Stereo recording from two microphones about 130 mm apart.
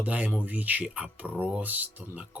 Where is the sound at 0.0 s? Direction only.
10° right (ahead or behind).